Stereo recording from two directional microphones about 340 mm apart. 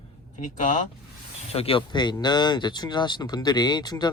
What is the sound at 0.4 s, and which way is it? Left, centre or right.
Speech, left.